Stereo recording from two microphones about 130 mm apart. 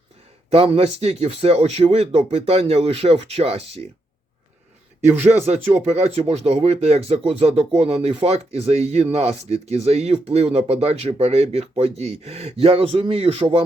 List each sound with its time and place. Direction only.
0.5 s speech: 50° right (ahead or behind)
5.0 s speech: 20° right (ahead or behind)
5.8 s speech: 55° right (ahead or behind)